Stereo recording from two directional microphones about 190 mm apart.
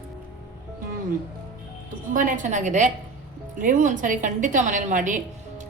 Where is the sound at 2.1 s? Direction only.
45° right (ahead or behind).